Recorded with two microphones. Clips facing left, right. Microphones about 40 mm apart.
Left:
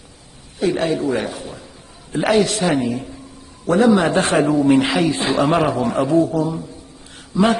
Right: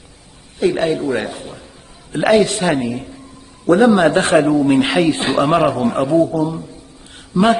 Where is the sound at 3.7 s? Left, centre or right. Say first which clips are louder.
Right 3 dB; right.